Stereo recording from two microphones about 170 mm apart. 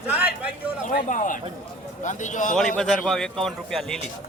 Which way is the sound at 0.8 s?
50° left (ahead or behind).